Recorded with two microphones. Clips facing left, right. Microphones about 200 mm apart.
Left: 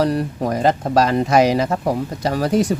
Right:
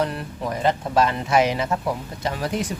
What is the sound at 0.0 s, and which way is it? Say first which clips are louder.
Speech: left 7 dB; 40° left (ahead or behind).